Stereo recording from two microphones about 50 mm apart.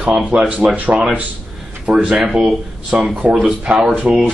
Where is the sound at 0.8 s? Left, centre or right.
Right.